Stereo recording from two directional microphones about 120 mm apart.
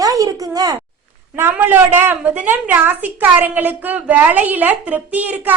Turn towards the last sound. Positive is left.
turn(degrees=-15)  # may be behind; listen again after turning